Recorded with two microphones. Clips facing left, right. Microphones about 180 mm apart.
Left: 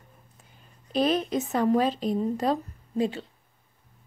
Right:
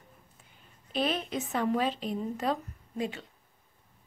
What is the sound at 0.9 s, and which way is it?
Speech, 40° left (ahead or behind).